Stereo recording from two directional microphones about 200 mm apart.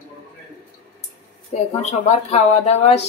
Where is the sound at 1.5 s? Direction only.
30° left (ahead or behind).